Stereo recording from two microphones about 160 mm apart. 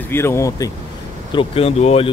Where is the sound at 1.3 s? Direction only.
35° left (ahead or behind).